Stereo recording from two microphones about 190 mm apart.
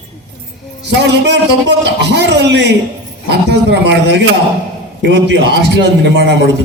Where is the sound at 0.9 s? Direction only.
65° right (ahead or behind).